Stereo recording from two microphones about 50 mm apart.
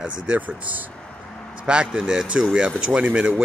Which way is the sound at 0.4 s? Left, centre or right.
Right.